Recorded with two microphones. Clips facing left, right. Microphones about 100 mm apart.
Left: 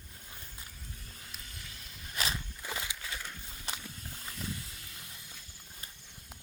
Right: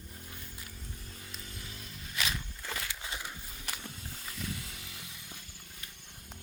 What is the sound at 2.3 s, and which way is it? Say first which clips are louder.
Walk: even; 15° left (ahead or behind).